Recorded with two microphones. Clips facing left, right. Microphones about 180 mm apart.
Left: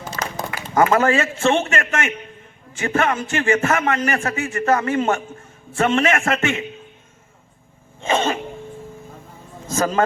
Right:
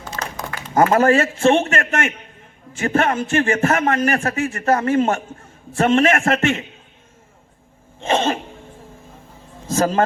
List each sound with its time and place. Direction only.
0.7 s a man's voice: 35° right (ahead or behind)
8.0 s a man's voice: 30° right (ahead or behind)
9.7 s speech: 30° right (ahead or behind)